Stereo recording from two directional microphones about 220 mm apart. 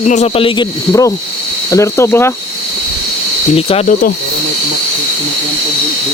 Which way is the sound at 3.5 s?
25° left (ahead or behind).